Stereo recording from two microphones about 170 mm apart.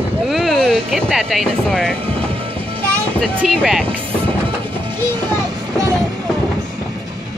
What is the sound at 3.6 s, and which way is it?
Speech, centre (ahead or behind).